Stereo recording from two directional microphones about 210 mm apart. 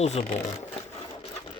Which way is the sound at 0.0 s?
30° left (ahead or behind).